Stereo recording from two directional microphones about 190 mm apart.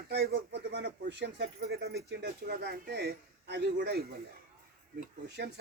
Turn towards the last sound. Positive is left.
turn(degrees=-55)  # may be behind; listen again after turning